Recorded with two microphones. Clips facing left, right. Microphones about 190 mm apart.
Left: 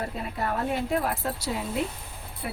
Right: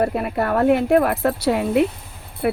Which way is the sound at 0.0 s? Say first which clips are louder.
Right 11 dB; 65° right (ahead or behind).